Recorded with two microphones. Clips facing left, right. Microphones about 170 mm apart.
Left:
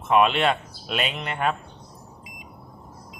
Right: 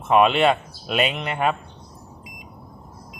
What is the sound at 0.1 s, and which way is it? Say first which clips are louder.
Speech: right 3 dB; centre (ahead or behind).